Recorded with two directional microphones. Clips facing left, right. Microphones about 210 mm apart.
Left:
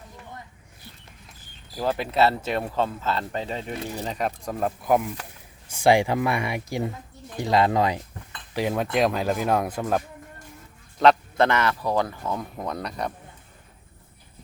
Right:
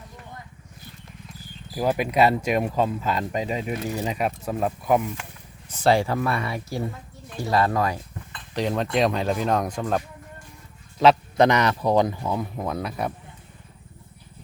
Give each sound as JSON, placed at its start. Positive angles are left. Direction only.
{"t": 1.8, "sound": "speech", "side_deg": -15}
{"t": 5.7, "sound": "speech", "side_deg": 15}
{"t": 8.5, "sound": "speech", "side_deg": 5}
{"t": 11.3, "sound": "speech", "side_deg": -15}